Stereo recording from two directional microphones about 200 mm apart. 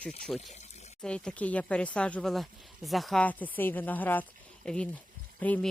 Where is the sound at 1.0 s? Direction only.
5° left (ahead or behind).